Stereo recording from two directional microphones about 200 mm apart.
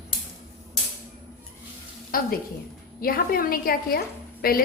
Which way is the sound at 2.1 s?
45° left (ahead or behind).